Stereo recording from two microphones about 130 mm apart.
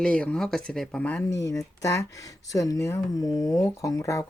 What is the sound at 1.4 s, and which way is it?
Speech, 25° left (ahead or behind).